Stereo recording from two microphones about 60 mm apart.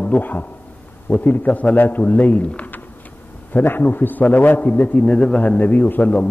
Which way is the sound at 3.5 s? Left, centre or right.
Left.